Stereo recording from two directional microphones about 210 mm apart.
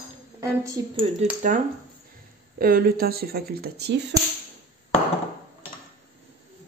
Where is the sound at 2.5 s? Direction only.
45° right (ahead or behind).